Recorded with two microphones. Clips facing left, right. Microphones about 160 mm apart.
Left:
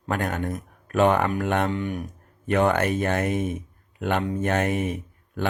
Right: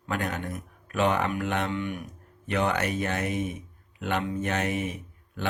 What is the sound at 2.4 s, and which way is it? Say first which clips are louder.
A man's voice: left 6 dB; 50° left (ahead or behind).